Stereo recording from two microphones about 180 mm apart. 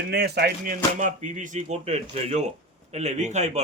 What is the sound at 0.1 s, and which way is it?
Speech, 65° right (ahead or behind).